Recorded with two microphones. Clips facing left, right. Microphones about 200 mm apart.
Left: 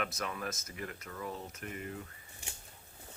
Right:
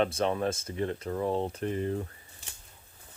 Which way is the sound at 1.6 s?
30° right (ahead or behind).